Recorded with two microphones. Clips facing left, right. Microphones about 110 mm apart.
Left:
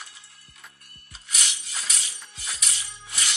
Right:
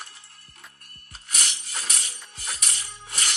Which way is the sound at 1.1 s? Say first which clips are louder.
Right 1 dB; 50° right (ahead or behind).